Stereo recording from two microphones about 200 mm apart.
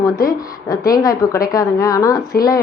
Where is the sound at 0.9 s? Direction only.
15° left (ahead or behind).